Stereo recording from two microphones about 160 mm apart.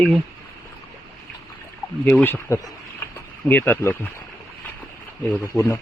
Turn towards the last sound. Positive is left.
turn(degrees=20)  # may be behind; listen again after turning